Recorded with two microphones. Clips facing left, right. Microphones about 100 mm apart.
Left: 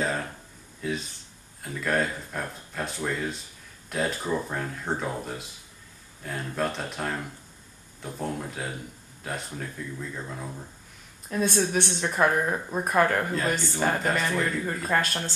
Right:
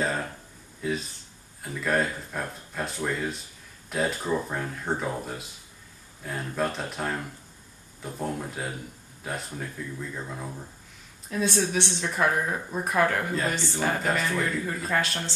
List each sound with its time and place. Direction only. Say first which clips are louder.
0.0 s a sound: even; centre (ahead or behind)
0.7 s speech: right 1 dB; centre (ahead or behind)
11.2 s speech: left 1 dB; 45° left (ahead or behind)
13.3 s speech: left 1 dB; centre (ahead or behind)
14.9 s speech: left 2 dB; 45° left (ahead or behind)